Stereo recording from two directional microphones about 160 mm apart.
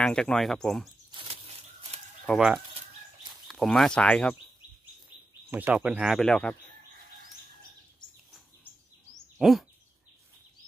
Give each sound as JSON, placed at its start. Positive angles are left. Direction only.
{"t": 0.0, "sound": "speech", "side_deg": 5}
{"t": 1.1, "sound": "a sound", "side_deg": -40}
{"t": 2.2, "sound": "speech", "side_deg": -5}
{"t": 5.5, "sound": "speech", "side_deg": -10}
{"t": 9.4, "sound": "speech", "side_deg": 0}